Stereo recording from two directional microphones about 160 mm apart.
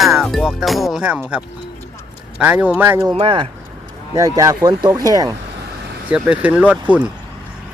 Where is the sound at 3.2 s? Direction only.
35° right (ahead or behind).